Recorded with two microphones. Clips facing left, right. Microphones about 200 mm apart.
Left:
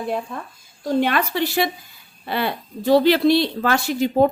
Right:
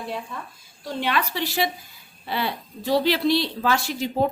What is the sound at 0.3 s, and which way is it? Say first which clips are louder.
A woman's voice: left 4 dB; 50° left (ahead or behind).